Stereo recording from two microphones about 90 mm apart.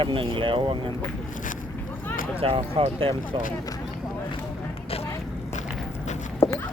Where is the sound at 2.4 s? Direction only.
90° right.